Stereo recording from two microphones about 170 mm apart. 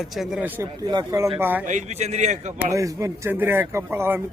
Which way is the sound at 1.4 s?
10° right (ahead or behind).